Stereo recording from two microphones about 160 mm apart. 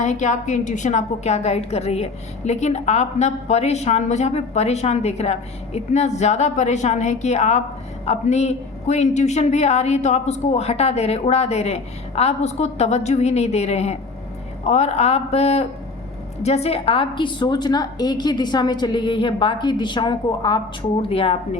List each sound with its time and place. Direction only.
0.0 s a woman's voice: 50° left (ahead or behind)